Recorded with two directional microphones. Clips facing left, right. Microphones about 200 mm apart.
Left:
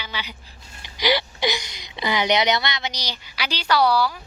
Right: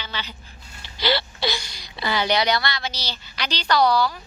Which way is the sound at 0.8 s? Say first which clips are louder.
Left 2 dB; 15° left (ahead or behind).